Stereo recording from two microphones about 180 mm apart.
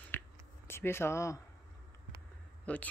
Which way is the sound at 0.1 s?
10° left (ahead or behind).